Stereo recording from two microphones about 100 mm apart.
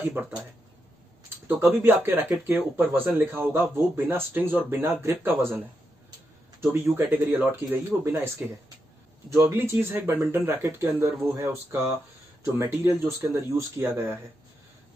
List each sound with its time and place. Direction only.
0.0 s speech: 20° right (ahead or behind)
1.5 s speech: 20° right (ahead or behind)
6.6 s speech: 25° right (ahead or behind)
9.4 s speech: 20° right (ahead or behind)